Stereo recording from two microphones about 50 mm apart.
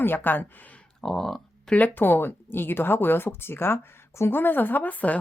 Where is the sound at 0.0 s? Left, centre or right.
Left.